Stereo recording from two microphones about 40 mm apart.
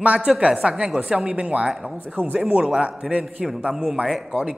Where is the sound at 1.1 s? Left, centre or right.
Right.